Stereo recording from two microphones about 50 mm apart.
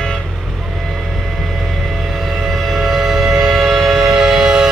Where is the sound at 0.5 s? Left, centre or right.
Centre.